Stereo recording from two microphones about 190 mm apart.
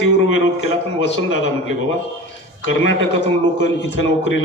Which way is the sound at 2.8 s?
70° left (ahead or behind).